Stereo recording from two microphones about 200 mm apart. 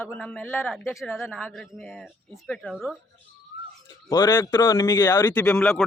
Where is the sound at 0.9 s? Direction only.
Centre (ahead or behind).